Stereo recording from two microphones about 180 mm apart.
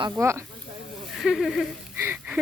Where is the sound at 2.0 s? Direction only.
10° right (ahead or behind).